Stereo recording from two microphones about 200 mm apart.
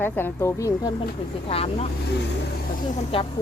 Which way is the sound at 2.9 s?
25° left (ahead or behind).